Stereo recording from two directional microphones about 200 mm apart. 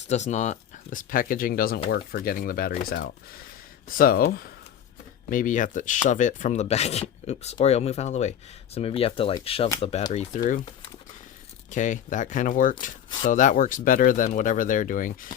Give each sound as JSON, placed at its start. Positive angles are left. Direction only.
{"t": 0.1, "sound": "speech", "side_deg": 35}
{"t": 11.7, "sound": "speech", "side_deg": 40}